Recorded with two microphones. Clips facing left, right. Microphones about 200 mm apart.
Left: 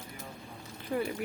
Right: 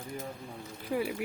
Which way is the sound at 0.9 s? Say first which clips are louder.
Right 1 dB; 5° right (ahead or behind).